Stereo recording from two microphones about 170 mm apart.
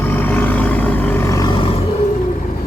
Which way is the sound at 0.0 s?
10° left (ahead or behind).